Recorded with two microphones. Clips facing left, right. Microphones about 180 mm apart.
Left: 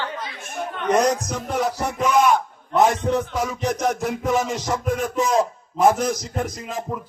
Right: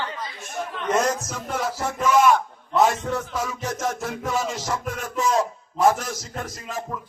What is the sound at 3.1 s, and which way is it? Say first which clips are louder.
Music: left 5 dB; 20° left (ahead or behind).